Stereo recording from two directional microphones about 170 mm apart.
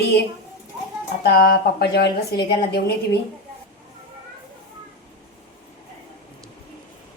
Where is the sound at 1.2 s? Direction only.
65° left (ahead or behind).